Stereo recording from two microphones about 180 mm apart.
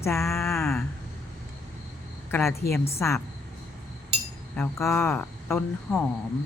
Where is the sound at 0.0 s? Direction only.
15° left (ahead or behind).